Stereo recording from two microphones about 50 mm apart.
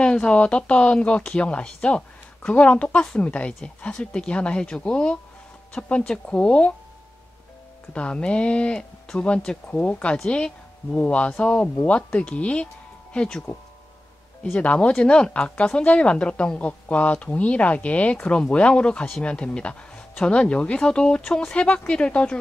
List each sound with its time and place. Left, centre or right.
0.0 s speech: centre
7.9 s a woman's voice: left
14.4 s speech: left